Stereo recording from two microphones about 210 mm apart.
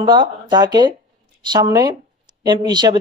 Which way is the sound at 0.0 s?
20° right (ahead or behind).